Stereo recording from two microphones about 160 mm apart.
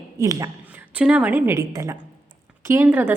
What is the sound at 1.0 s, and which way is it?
A woman's voice, 5° right (ahead or behind).